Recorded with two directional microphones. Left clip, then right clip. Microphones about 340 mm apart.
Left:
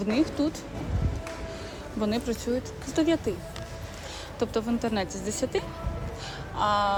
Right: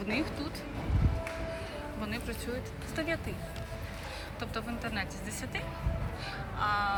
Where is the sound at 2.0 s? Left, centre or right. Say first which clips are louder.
Left 12 dB; centre.